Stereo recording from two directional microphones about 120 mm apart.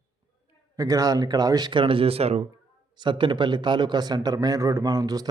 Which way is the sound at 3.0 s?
40° right (ahead or behind).